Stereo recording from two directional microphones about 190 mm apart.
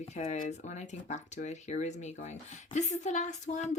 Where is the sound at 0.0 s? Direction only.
35° left (ahead or behind).